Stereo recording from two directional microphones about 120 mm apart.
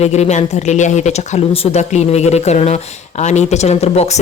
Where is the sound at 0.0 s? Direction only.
70° left (ahead or behind).